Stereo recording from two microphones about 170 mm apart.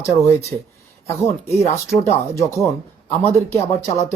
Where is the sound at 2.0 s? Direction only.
20° left (ahead or behind).